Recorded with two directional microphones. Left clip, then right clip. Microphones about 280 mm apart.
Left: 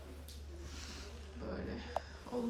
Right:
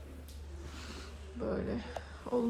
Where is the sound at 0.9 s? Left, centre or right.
Centre.